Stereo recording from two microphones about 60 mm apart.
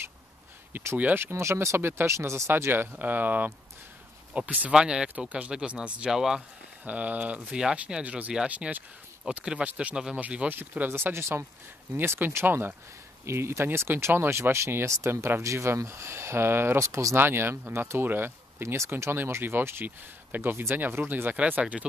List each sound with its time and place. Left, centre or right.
0.7 s speech: right
1.8 s speech: right
2.5 s speech: right
4.7 s speech: centre
6.8 s speech: right
9.4 s speech: centre
9.7 s speech: right
9.9 s speech: centre
10.5 s speech: right
16.8 s speech: right
17.2 s speech: right